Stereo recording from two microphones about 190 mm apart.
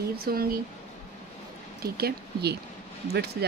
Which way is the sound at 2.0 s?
55° right (ahead or behind).